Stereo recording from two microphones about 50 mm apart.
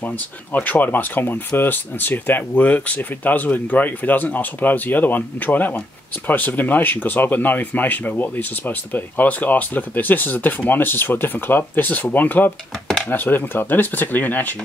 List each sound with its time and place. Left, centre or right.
0.5 s speech: left